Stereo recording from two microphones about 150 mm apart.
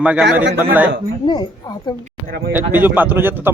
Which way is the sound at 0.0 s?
5° right (ahead or behind).